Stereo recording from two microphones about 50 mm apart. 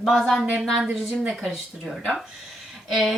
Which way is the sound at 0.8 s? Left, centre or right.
Right.